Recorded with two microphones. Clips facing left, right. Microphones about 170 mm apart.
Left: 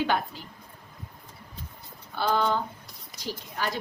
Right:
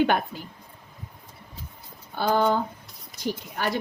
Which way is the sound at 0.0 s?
55° right (ahead or behind).